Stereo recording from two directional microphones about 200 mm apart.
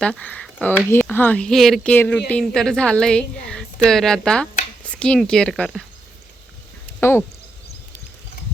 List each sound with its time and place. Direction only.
0.0 s a woman's voice: 5° left (ahead or behind)